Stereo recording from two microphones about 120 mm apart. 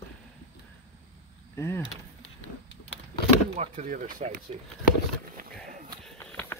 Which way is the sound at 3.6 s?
85° right.